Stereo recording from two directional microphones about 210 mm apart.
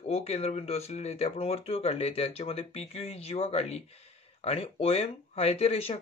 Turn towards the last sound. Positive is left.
turn(degrees=30)  # may be behind; listen again after turning